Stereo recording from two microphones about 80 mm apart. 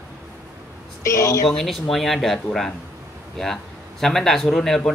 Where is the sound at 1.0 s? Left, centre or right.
Left.